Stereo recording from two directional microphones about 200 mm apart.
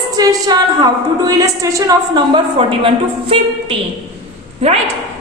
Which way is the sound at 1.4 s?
15° right (ahead or behind).